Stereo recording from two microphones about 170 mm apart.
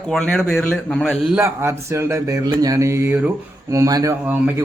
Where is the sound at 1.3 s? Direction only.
15° right (ahead or behind).